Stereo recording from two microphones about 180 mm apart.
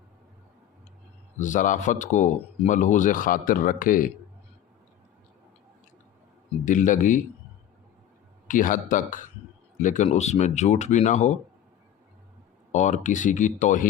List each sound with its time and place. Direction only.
1.4 s a man's voice: 45° left (ahead or behind)
6.7 s a man's voice: 45° left (ahead or behind)
8.4 s a man's voice: 50° left (ahead or behind)
12.7 s a man's voice: 45° left (ahead or behind)